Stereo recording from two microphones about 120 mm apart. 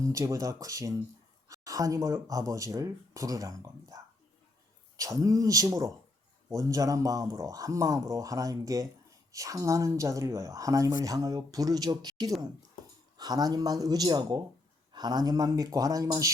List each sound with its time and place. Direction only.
0.0 s speech: 25° right (ahead or behind)